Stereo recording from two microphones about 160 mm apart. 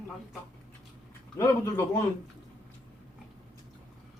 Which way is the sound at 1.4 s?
20° left (ahead or behind).